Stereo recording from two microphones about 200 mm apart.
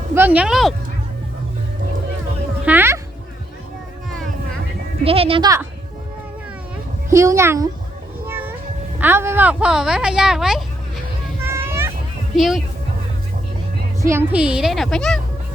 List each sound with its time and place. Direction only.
0.1 s speech: 10° right (ahead or behind)
2.6 s a sound: 10° right (ahead or behind)
5.0 s speech: 30° right (ahead or behind)
7.1 s speech: 15° right (ahead or behind)
8.3 s a sound: 10° right (ahead or behind)
9.0 s speech: 10° right (ahead or behind)
11.4 s a sound: 15° right (ahead or behind)
12.4 s a woman's voice: centre (ahead or behind)
14.0 s a woman's voice: 10° right (ahead or behind); by 15.2 s 5° left (ahead or behind)